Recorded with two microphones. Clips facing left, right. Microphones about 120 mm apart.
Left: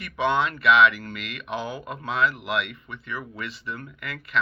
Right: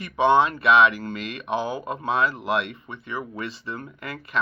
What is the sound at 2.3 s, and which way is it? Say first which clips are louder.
Speech: right 4 dB; 30° right (ahead or behind).